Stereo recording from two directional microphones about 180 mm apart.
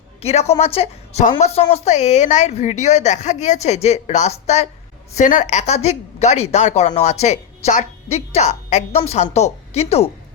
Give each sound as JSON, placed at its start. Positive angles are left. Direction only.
{"t": 0.2, "sound": "a woman's voice", "side_deg": 35}